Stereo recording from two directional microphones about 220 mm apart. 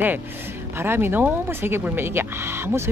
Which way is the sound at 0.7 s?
10° right (ahead or behind).